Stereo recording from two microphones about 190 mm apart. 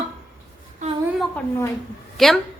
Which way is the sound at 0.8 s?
40° right (ahead or behind).